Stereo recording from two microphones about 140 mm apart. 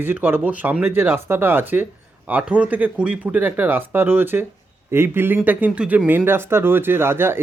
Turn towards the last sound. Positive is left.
turn(degrees=-15)  # may be behind; listen again after turning